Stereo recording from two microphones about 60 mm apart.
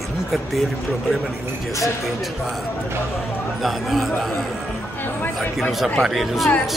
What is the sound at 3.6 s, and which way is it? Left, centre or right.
Speech, centre.